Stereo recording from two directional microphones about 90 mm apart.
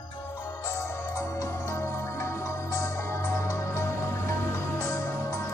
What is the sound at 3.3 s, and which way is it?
Music, 30° left (ahead or behind).